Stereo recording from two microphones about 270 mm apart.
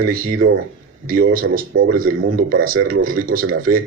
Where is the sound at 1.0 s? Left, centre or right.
Right.